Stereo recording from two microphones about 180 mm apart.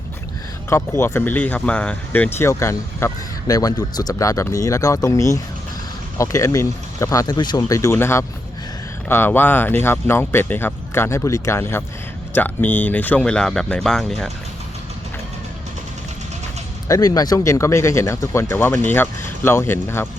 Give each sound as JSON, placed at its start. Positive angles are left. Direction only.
{"t": 0.7, "sound": "speech", "side_deg": 15}
{"t": 16.9, "sound": "speech", "side_deg": 20}